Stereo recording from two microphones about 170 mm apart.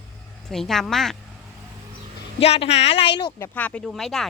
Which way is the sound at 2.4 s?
35° left (ahead or behind).